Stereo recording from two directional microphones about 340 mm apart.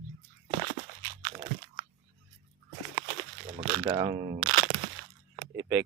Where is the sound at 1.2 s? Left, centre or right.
Centre.